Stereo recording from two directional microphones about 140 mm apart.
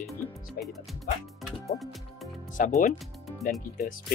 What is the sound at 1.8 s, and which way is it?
Music, centre (ahead or behind).